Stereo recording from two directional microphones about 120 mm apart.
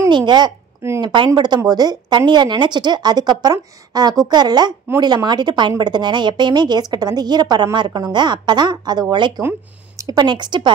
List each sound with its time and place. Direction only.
0.1 s a woman's voice: 40° right (ahead or behind)
9.4 s speech: 20° right (ahead or behind)
10.0 s a woman's voice: 35° right (ahead or behind)